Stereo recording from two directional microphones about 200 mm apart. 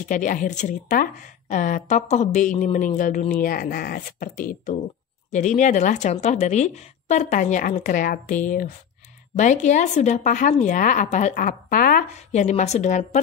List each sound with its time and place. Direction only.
0.1 s a woman's voice: 40° left (ahead or behind)